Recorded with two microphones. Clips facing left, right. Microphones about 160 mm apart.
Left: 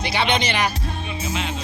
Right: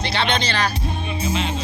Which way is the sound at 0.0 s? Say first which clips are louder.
Left 1 dB; 15° left (ahead or behind).